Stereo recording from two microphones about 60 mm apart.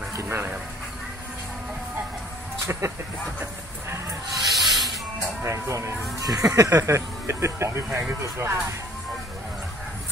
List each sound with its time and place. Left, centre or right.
0.2 s speech: right
2.6 s speech: right
4.4 s snake: centre
5.4 s speech: right
6.2 s speech: right